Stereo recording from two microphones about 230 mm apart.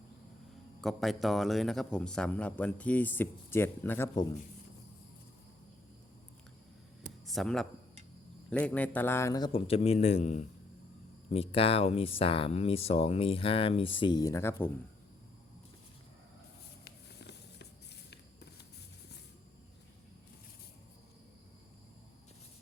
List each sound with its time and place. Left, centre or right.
0.8 s speech: centre
7.3 s a man's voice: centre
16.8 s a sound: left